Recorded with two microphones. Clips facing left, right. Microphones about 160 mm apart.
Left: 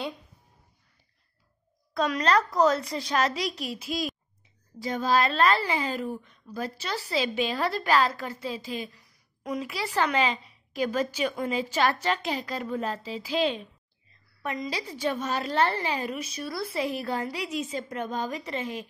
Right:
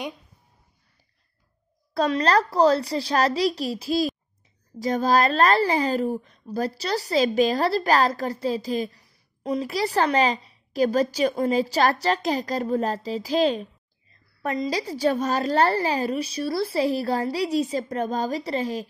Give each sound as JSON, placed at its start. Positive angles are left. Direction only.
{"t": 2.0, "sound": "a woman's voice", "side_deg": -30}